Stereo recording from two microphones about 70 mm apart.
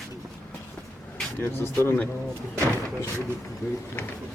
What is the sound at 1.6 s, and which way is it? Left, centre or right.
Speech, left.